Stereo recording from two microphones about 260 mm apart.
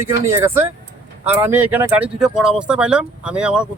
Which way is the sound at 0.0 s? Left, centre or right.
Centre.